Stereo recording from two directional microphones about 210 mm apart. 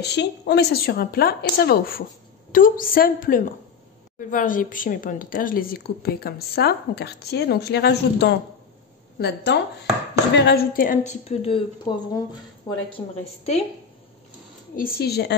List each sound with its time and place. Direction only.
0.0 s a woman's voice: 55° left (ahead or behind); by 12.8 s 20° left (ahead or behind)
14.8 s a woman's voice: 45° left (ahead or behind)